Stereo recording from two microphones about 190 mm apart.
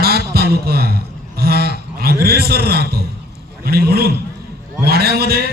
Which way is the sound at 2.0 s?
55° right (ahead or behind).